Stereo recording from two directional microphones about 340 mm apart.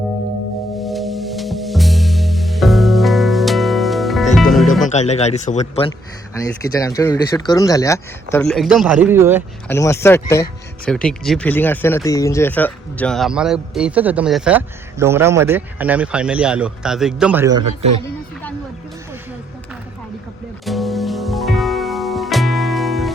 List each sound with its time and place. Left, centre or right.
0.9 s music: centre
4.9 s speech: centre
9.6 s speech: centre
20.7 s music: centre